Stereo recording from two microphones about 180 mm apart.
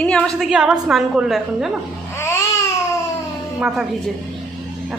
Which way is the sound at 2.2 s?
15° left (ahead or behind).